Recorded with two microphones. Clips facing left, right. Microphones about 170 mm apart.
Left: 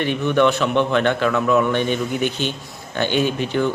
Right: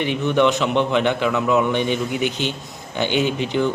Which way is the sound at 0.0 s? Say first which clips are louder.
Left 1 dB; 15° right (ahead or behind).